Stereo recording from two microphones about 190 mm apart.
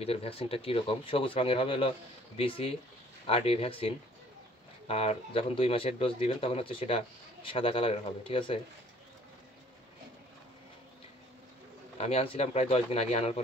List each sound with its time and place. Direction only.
0.0 s speech: 30° left (ahead or behind)
12.0 s speech: 30° left (ahead or behind)